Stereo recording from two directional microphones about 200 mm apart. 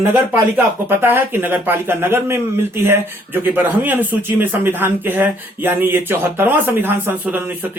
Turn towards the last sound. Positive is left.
turn(degrees=-10)  # may be behind; listen again after turning